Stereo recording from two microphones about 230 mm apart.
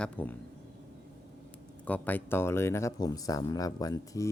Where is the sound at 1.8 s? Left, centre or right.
Centre.